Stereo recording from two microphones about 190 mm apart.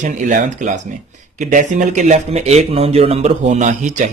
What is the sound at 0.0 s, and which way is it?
Speech, 40° right (ahead or behind).